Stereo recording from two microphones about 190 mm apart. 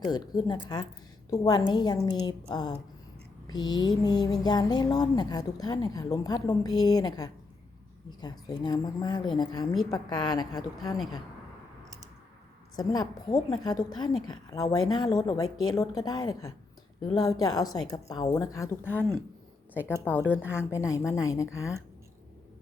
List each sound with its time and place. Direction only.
0.0 s speech: 20° left (ahead or behind)
12.7 s speech: 20° left (ahead or behind)
15.4 s a woman's voice: 90° left
15.7 s a woman's voice: 15° left (ahead or behind)